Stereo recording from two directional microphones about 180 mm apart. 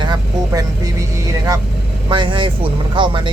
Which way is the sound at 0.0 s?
20° right (ahead or behind).